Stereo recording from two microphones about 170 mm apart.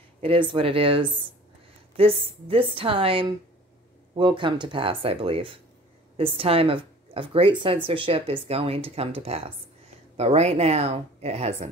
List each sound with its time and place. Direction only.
0.2 s speech: 30° right (ahead or behind)